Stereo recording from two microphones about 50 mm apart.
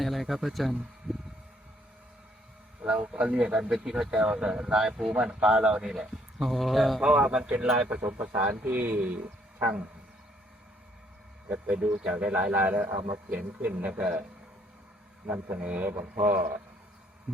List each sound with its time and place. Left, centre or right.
0.0 s a sound: centre
0.3 s speech: centre
1.1 s a sound: centre
2.8 s speech: right; by 7.0 s centre
7.0 s speech: right
8.0 s speech: right
9.0 s speech: right
11.4 s speech: right
15.5 s speech: right